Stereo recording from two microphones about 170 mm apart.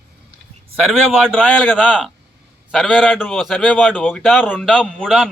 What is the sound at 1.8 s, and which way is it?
A man's voice, 5° right (ahead or behind).